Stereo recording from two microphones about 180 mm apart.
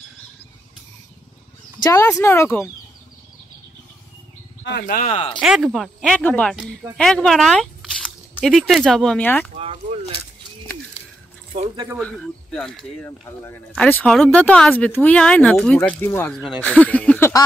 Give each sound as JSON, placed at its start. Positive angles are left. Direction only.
{"t": 1.8, "sound": "speech", "side_deg": 15}
{"t": 4.6, "sound": "speech", "side_deg": 55}
{"t": 5.1, "sound": "speech", "side_deg": 30}
{"t": 5.4, "sound": "speech", "side_deg": 0}
{"t": 9.6, "sound": "speech", "side_deg": -30}
{"t": 12.0, "sound": "speech", "side_deg": 5}